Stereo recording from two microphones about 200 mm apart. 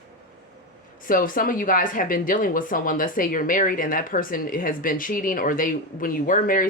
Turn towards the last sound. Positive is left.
turn(degrees=45)  # may be behind; listen again after turning